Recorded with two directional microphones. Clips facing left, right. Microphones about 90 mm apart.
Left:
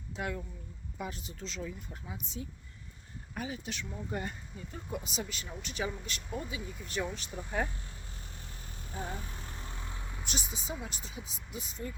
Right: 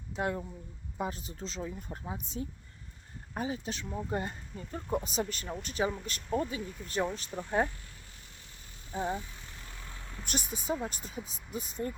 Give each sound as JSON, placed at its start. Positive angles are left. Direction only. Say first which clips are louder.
{"t": 0.2, "sound": "speech", "louder": "right 4 dB", "side_deg": -30}
{"t": 6.6, "sound": "speech", "louder": "right 3 dB", "side_deg": 5}
{"t": 6.8, "sound": "speech", "louder": "right 4 dB", "side_deg": -35}
{"t": 8.9, "sound": "speech", "louder": "right 7 dB", "side_deg": -35}
{"t": 9.5, "sound": "vehicle", "louder": "left 4 dB", "side_deg": 30}
{"t": 9.8, "sound": "vehicle", "louder": "left 2 dB", "side_deg": 15}
{"t": 10.4, "sound": "speech", "louder": "right 7 dB", "side_deg": 0}
{"t": 11.5, "sound": "speech", "louder": "right 5 dB", "side_deg": -45}